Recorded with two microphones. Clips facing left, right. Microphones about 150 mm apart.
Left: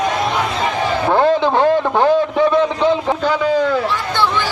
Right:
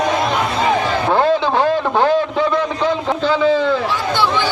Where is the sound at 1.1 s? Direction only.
20° left (ahead or behind).